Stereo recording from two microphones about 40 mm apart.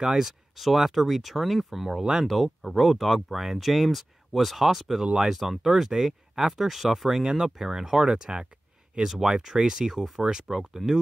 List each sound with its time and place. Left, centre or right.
0.0 s speech: centre
0.6 s speech: centre
5.0 s speech: right
5.3 s speech: centre